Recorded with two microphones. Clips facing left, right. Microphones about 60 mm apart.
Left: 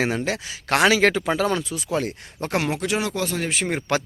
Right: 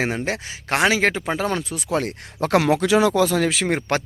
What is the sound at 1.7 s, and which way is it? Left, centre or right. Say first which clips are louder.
Speech: right 2 dB; right.